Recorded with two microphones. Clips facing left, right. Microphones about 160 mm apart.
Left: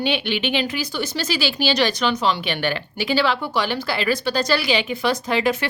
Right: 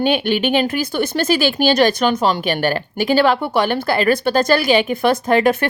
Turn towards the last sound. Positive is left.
turn(degrees=-50)  # may be behind; listen again after turning